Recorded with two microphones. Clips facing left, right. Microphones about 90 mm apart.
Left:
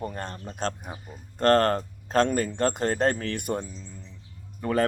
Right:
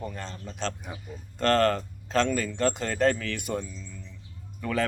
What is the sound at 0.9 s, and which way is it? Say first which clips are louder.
Speech: even; 45° left (ahead or behind).